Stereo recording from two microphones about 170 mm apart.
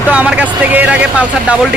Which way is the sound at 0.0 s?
10° right (ahead or behind).